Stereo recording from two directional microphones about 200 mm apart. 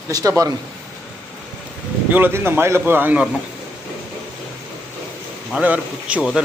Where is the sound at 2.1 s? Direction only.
10° right (ahead or behind).